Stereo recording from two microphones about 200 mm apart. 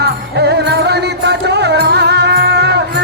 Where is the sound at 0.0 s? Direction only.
55° right (ahead or behind).